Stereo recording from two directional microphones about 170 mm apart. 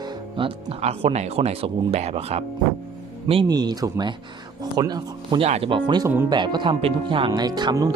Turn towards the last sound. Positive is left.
turn(degrees=-25)  # may be behind; listen again after turning